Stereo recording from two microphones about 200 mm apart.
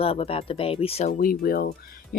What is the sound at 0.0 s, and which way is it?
Speech, 30° left (ahead or behind).